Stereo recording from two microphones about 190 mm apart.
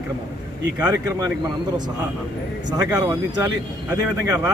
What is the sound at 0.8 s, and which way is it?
Speech, 20° right (ahead or behind).